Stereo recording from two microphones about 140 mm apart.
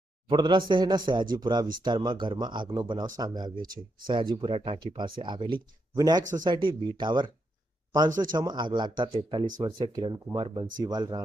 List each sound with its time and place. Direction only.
0.3 s speech: 35° right (ahead or behind)